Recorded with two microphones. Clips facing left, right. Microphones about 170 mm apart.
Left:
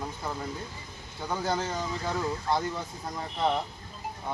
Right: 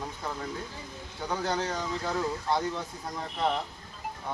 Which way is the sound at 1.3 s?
5° left (ahead or behind).